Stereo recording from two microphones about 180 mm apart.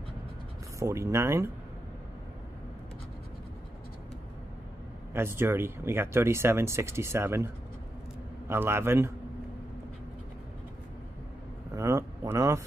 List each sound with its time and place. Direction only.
0.7 s speech: 15° right (ahead or behind)
5.1 s speech: 15° right (ahead or behind)
11.7 s a sound: 15° right (ahead or behind)